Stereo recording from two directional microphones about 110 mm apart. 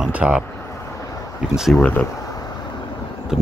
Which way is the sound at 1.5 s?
5° right (ahead or behind).